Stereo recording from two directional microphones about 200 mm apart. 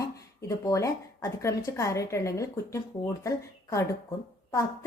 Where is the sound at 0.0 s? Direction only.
15° left (ahead or behind).